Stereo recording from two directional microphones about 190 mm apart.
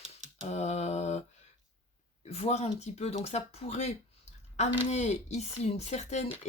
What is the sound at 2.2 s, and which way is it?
Speech, 35° left (ahead or behind).